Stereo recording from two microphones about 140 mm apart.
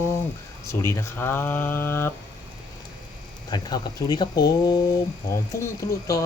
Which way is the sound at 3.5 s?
30° left (ahead or behind).